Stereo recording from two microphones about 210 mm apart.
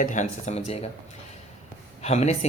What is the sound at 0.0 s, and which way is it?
Speech, 35° left (ahead or behind).